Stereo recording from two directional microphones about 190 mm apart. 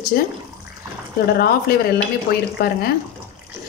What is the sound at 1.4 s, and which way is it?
Speech, 55° left (ahead or behind).